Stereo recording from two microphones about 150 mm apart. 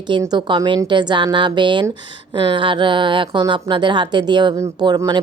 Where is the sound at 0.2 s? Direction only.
30° right (ahead or behind).